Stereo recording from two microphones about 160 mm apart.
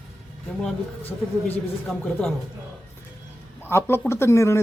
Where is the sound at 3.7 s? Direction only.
15° left (ahead or behind).